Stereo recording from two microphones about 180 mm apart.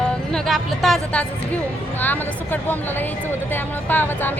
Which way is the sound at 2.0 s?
10° left (ahead or behind).